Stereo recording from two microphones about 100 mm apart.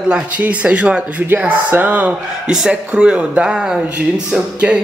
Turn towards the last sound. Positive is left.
turn(degrees=-10)  # may be behind; listen again after turning